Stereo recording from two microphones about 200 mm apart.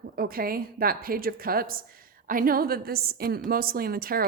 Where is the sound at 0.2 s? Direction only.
50° right (ahead or behind).